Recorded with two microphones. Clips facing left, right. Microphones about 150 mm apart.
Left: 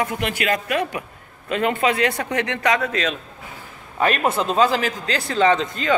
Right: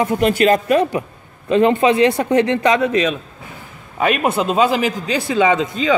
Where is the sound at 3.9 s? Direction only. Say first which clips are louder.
Right 3 dB; 10° right (ahead or behind).